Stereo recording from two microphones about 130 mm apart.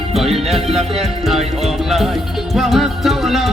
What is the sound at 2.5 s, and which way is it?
Music, centre (ahead or behind).